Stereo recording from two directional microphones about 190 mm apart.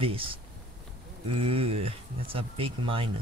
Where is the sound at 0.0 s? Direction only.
30° right (ahead or behind).